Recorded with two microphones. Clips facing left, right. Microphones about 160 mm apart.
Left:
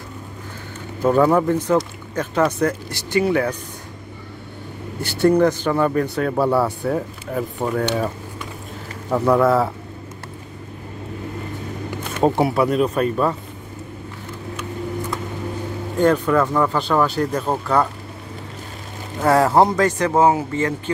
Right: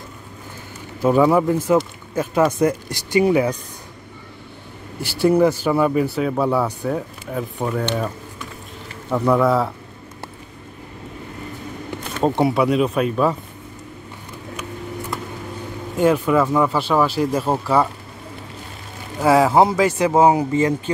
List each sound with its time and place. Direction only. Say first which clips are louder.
1.0 s speech: even; 5° right (ahead or behind)
5.0 s speech: even; 5° right (ahead or behind)
9.1 s speech: left 1 dB; centre (ahead or behind)
12.2 s speech: even; 5° left (ahead or behind)
16.0 s speech: even; 5° right (ahead or behind)
19.2 s speech: right 1 dB; centre (ahead or behind)